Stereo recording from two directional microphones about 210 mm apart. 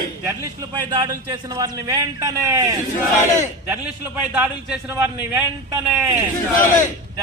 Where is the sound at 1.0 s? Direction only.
15° right (ahead or behind).